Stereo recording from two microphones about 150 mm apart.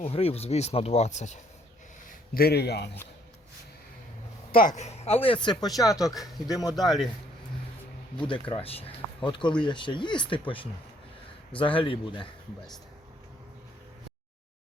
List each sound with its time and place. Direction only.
0.0 s speech: 40° left (ahead or behind)
2.0 s speech: 85° left
4.5 s speech: 60° left (ahead or behind); by 6.7 s 25° left (ahead or behind)
6.7 s a man's voice: centre (ahead or behind)
8.3 s speech: 35° left (ahead or behind)